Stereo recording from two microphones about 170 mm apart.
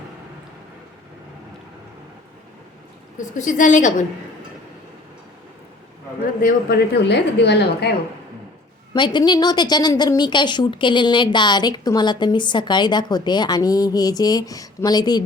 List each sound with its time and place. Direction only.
3.2 s a woman's voice: 50° left (ahead or behind)
6.4 s a woman's voice: 70° left (ahead or behind)
8.9 s a woman's voice: 25° left (ahead or behind)